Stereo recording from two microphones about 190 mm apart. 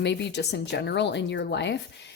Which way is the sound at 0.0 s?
65° left (ahead or behind).